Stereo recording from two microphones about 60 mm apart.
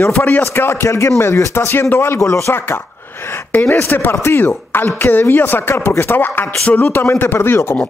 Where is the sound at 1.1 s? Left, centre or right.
Left.